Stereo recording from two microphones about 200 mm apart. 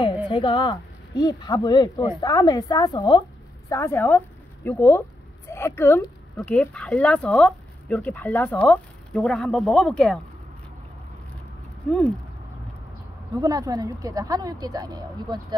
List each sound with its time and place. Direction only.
0.3 s speech: 25° left (ahead or behind); by 10.2 s 5° left (ahead or behind)
11.9 s a sound: 5° left (ahead or behind)
13.3 s speech: 20° right (ahead or behind)